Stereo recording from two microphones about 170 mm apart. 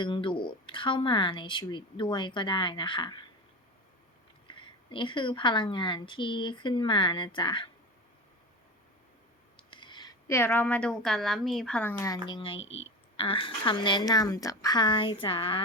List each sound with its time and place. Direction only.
0.0 s speech: 30° left (ahead or behind)
4.4 s speech: 30° left (ahead or behind)
9.6 s speech: 30° left (ahead or behind)
12.3 s speech: 30° left (ahead or behind)
12.5 s speech: 90° left
13.1 s speech: 30° left (ahead or behind)